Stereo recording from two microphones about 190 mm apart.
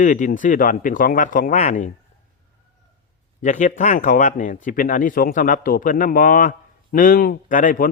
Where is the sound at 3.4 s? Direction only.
40° left (ahead or behind).